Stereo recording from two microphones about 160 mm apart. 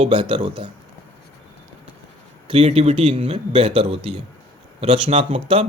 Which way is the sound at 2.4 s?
40° right (ahead or behind).